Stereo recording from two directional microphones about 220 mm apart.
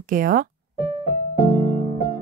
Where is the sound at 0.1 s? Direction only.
40° right (ahead or behind).